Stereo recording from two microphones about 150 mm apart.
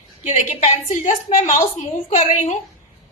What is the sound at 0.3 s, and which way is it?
A woman's voice, 55° left (ahead or behind).